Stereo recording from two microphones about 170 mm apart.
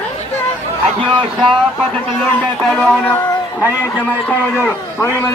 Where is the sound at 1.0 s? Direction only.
25° right (ahead or behind).